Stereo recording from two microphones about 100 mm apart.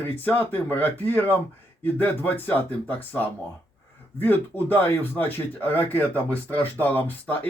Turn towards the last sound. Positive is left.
turn(degrees=20)  # may be behind; listen again after turning